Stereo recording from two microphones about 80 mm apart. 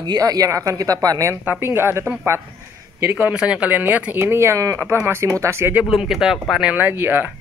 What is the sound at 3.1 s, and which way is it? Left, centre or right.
Speech, centre.